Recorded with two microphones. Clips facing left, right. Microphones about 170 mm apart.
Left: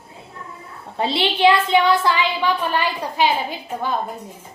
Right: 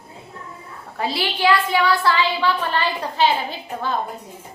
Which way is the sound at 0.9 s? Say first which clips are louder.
Left 3 dB; 25° left (ahead or behind).